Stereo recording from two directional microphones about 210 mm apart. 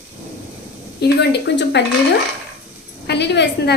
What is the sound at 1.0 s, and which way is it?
Speech, 50° left (ahead or behind).